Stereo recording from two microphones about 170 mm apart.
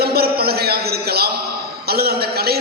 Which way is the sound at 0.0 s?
65° right (ahead or behind).